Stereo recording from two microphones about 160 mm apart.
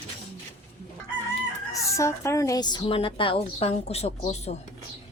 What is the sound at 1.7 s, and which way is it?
A woman's voice, 20° left (ahead or behind).